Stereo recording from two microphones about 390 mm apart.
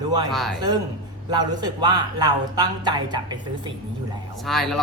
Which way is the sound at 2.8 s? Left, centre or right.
Centre.